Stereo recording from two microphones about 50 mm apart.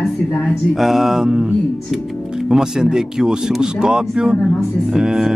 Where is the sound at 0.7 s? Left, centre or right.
Centre.